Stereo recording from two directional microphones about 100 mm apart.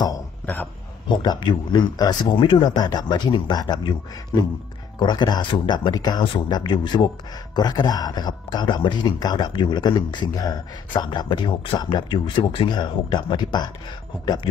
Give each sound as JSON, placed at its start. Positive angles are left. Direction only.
{"t": 1.0, "sound": "speech", "side_deg": 45}
{"t": 4.9, "sound": "speech", "side_deg": 50}